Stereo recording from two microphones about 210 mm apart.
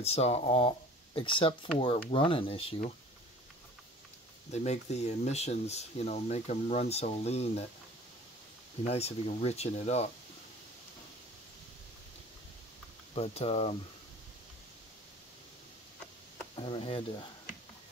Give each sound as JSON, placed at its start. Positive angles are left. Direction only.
{"t": 0.0, "sound": "speech", "side_deg": 30}
{"t": 4.5, "sound": "speech", "side_deg": 30}
{"t": 8.8, "sound": "speech", "side_deg": 30}
{"t": 13.1, "sound": "speech", "side_deg": 30}
{"t": 16.5, "sound": "speech", "side_deg": 25}